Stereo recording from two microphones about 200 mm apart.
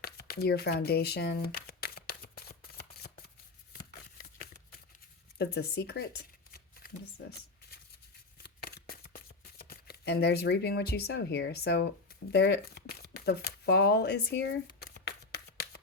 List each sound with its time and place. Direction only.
0.0 s shuffling cards: 50° left (ahead or behind)
5.4 s speech: 55° left (ahead or behind)
6.5 s shuffling cards: 50° left (ahead or behind)
8.4 s shuffling cards: 50° left (ahead or behind)